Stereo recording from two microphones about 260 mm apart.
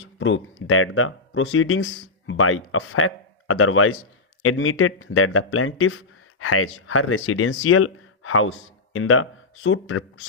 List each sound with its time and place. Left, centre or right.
0.0 s speech: left